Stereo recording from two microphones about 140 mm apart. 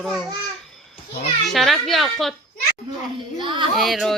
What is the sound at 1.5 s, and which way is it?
Speech, centre (ahead or behind).